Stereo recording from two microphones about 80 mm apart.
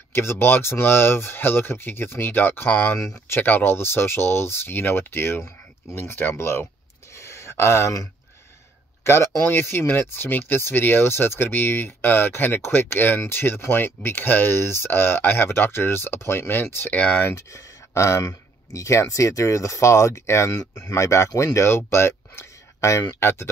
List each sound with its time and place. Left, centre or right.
0.1 s speech: left
7.2 s a sound: left
9.0 s speech: left; by 17.3 s centre
17.3 s speech: left